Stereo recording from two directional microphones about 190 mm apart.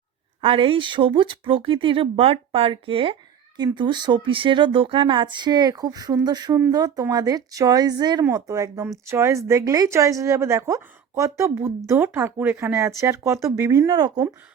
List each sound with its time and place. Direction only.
0.4 s speech: 30° right (ahead or behind)